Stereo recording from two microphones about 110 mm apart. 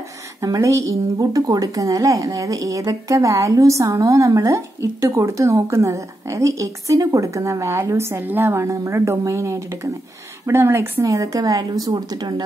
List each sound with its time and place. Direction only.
0.4 s a woman's voice: 30° right (ahead or behind)